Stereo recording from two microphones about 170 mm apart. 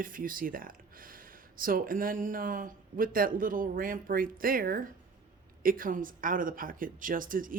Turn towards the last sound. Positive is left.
turn(degrees=-55)  # may be behind; listen again after turning